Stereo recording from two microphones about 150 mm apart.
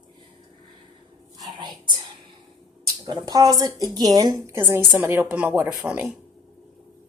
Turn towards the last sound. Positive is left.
turn(degrees=-10)  # may be behind; listen again after turning